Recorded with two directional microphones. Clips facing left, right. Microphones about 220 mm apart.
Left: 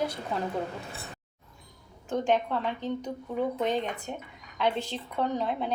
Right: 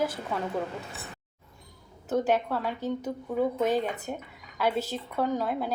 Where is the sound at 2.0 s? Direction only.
5° right (ahead or behind).